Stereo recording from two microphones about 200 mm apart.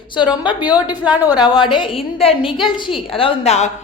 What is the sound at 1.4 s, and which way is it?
A woman's voice, 20° left (ahead or behind).